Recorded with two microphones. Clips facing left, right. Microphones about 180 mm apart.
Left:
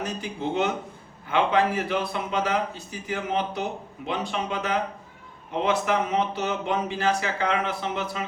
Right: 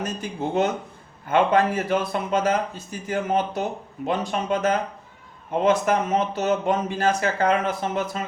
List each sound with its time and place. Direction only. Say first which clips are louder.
0.0 s a man's voice: right 2 dB; 45° right (ahead or behind)